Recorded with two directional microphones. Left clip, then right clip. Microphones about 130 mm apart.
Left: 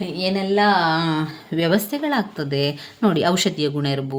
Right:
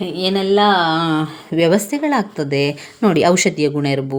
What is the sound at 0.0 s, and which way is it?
Speech, 50° right (ahead or behind).